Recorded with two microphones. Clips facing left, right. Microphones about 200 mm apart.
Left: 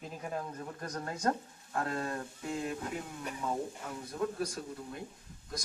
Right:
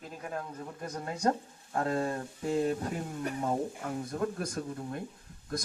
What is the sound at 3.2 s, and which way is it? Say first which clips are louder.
Speech: right 5 dB; 50° right (ahead or behind).